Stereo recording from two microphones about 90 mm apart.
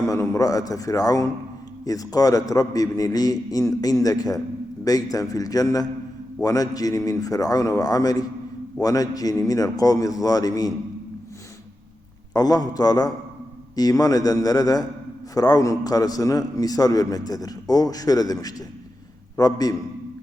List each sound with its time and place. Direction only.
0.1 s a man's voice: 40° left (ahead or behind)
12.3 s a man's voice: 45° left (ahead or behind)